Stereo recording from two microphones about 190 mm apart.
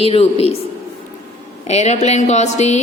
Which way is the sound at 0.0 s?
30° left (ahead or behind).